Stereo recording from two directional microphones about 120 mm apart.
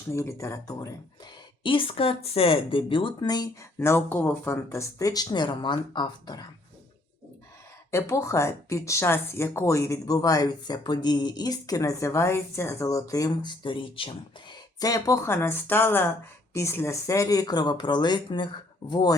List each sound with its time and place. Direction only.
0.1 s speech: 25° left (ahead or behind)
1.6 s speech: 45° left (ahead or behind)
3.8 s speech: 20° left (ahead or behind); by 6.4 s 40° left (ahead or behind)
7.9 s speech: 25° left (ahead or behind); by 14.6 s 45° left (ahead or behind)
14.8 s speech: 30° left (ahead or behind)